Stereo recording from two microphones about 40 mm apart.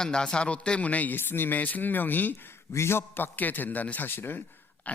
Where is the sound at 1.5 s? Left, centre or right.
Left.